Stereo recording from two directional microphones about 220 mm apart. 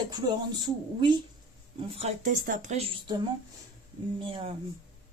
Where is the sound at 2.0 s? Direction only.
30° right (ahead or behind).